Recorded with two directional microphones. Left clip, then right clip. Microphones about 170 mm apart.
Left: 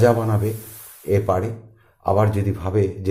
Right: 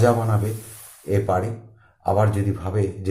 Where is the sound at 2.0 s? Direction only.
35° left (ahead or behind).